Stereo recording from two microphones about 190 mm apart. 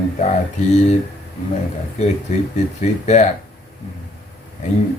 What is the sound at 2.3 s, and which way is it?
Mantra, 40° left (ahead or behind).